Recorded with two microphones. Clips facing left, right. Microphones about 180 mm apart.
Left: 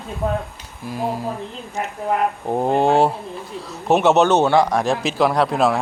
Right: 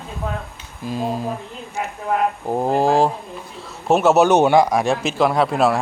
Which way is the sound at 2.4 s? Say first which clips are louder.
Left 1 dB; centre (ahead or behind).